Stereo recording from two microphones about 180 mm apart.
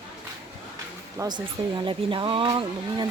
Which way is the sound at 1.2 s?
25° right (ahead or behind).